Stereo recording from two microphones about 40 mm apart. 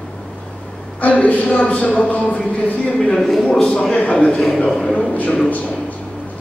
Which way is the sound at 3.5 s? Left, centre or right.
Centre.